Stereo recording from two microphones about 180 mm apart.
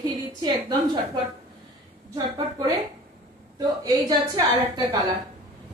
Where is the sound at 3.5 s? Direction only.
20° right (ahead or behind).